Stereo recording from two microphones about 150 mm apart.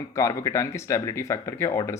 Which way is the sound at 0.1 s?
20° left (ahead or behind).